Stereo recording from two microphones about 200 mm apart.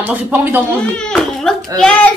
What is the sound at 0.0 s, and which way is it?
Speech, 10° right (ahead or behind).